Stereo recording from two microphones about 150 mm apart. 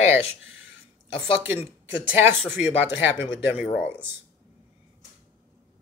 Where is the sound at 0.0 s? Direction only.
15° right (ahead or behind).